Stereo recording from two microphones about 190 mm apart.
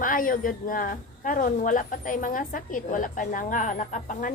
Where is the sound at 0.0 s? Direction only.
45° left (ahead or behind).